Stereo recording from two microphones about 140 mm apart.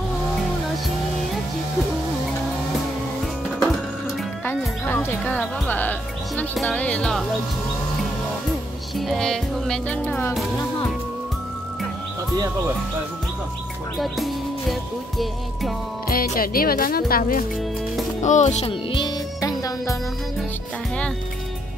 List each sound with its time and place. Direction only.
4.5 s music: 15° left (ahead or behind)
6.5 s speech: 5° left (ahead or behind)
8.9 s speech: centre (ahead or behind)
13.9 s music: centre (ahead or behind)
16.1 s speech: 90° left
18.2 s speech: 60° left (ahead or behind)
18.7 s music: 35° left (ahead or behind)